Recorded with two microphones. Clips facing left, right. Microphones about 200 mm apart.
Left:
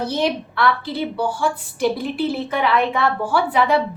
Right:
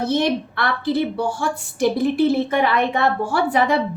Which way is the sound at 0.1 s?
45° right (ahead or behind).